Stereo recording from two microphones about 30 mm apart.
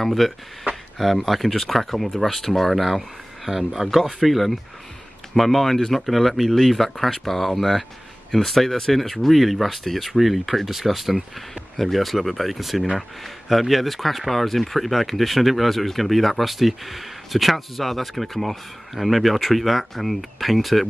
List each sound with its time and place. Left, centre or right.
0.0 s speech: centre
3.4 s speech: centre
11.7 s speech: centre